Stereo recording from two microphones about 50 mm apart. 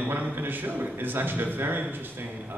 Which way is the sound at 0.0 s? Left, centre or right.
Right.